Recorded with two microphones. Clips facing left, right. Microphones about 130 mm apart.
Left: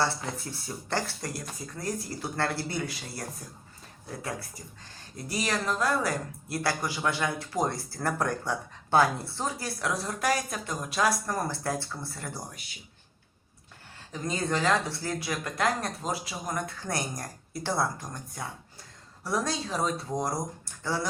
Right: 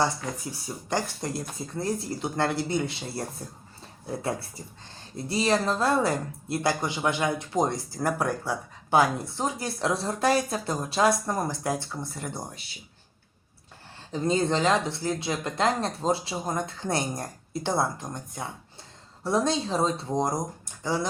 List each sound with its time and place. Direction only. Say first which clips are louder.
0.0 s speech: right 2 dB; 15° right (ahead or behind)
14.1 s speech: right 6 dB; 30° right (ahead or behind)